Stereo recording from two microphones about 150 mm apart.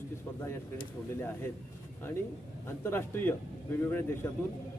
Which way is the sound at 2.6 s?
15° left (ahead or behind).